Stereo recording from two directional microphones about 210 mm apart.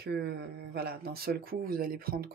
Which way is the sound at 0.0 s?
50° right (ahead or behind).